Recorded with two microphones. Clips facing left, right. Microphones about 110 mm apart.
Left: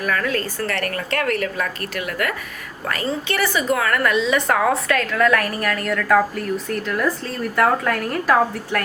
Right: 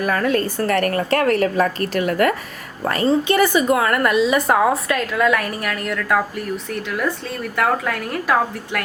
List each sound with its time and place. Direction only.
0.0 s speech: 25° right (ahead or behind)
0.9 s a woman's voice: 30° right (ahead or behind)
4.1 s a woman's voice: 10° right (ahead or behind)